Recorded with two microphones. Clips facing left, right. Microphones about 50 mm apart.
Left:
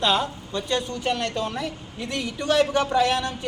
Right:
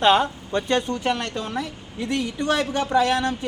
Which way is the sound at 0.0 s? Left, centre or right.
Right.